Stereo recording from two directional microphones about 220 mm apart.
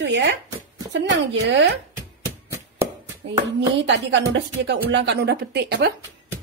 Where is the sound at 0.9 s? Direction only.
55° right (ahead or behind).